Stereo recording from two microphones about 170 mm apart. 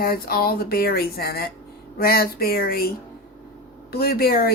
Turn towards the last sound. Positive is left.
turn(degrees=65)  # may be behind; listen again after turning